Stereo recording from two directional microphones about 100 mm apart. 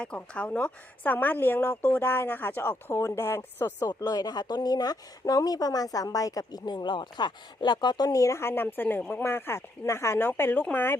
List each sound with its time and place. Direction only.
0.0 s a woman's voice: 10° left (ahead or behind)
3.8 s speech: 40° left (ahead or behind); by 10.9 s 20° left (ahead or behind)